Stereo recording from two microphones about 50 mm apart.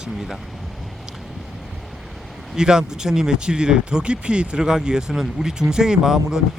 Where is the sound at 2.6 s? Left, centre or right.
Centre.